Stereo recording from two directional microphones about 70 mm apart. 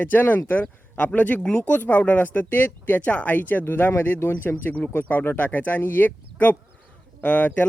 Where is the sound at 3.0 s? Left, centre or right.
Centre.